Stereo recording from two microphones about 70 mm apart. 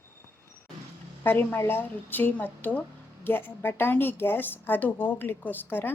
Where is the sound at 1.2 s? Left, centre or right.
Left.